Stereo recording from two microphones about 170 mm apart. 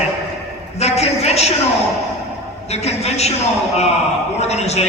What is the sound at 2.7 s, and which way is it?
Speech, 40° left (ahead or behind).